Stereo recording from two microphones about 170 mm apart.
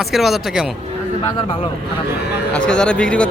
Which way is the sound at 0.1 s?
Centre (ahead or behind).